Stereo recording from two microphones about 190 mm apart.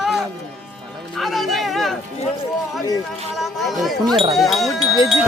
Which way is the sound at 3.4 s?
Centre (ahead or behind).